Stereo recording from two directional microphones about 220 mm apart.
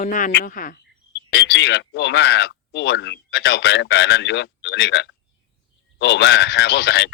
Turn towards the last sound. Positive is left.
turn(degrees=50)  # may be behind; listen again after turning